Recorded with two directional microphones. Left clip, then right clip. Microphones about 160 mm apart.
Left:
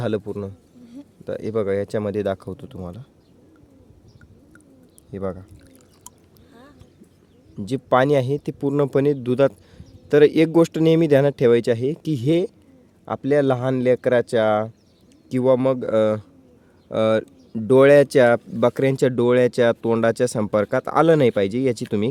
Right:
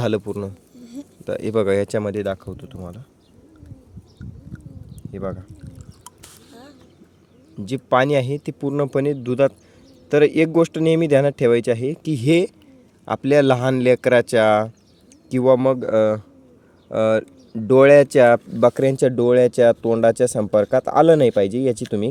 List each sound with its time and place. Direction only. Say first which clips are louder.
0.0 s speech: right 3 dB; 10° right (ahead or behind)
2.0 s speech: even; 5° left (ahead or behind)
5.1 s speech: even; 5° left (ahead or behind)
6.5 s a sound: right 3 dB; 35° right (ahead or behind)
7.5 s speech: right 1 dB; 5° left (ahead or behind)